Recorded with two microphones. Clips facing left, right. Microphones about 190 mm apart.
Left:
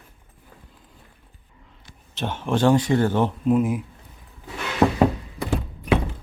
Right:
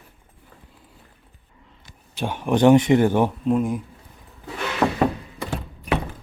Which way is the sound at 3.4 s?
5° left (ahead or behind).